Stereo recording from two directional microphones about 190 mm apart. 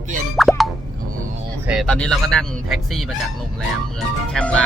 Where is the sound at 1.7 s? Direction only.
Centre (ahead or behind).